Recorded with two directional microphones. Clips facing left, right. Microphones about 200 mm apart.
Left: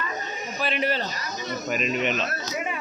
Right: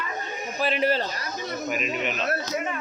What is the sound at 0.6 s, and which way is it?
Speech, 35° right (ahead or behind).